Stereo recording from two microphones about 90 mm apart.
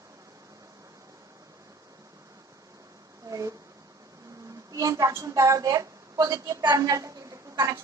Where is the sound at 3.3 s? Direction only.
35° right (ahead or behind).